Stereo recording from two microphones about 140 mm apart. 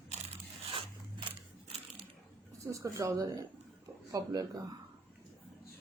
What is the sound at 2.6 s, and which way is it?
Speech, 20° right (ahead or behind).